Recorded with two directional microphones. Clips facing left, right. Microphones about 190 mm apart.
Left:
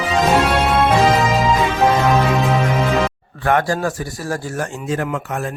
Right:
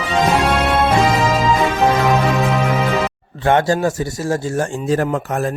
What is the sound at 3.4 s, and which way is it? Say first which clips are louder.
A man's voice: right 3 dB; 25° right (ahead or behind).